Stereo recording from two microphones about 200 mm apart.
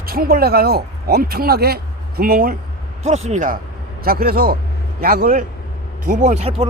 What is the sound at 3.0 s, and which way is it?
A man's voice, 35° right (ahead or behind).